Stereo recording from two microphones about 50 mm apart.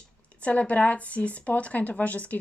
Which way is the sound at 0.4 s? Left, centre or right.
Left.